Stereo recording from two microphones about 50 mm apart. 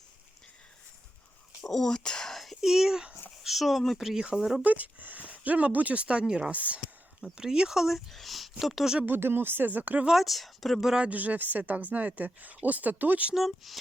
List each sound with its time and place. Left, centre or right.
1.6 s a sound: centre
2.3 s a sound: centre
2.6 s speech: centre
4.6 s speech: right
6.5 s speech: right
7.2 s speech: centre
7.8 s speech: centre
9.0 s a woman's voice: right
10.1 s speech: centre
10.8 s speech: centre
11.1 s a woman's voice: right
13.3 s speech: centre